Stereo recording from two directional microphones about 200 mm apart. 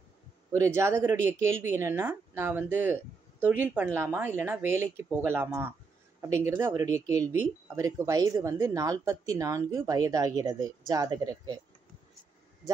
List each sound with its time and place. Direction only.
0.5 s speech: 15° right (ahead or behind)